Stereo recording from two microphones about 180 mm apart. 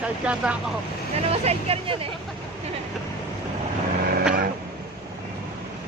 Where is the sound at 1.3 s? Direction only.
35° right (ahead or behind).